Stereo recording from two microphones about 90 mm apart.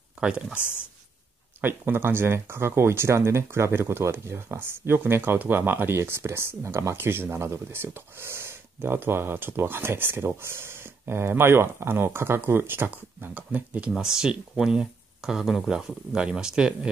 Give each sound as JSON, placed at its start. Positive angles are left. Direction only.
{"t": 0.2, "sound": "speech", "side_deg": -10}
{"t": 1.6, "sound": "speech", "side_deg": -25}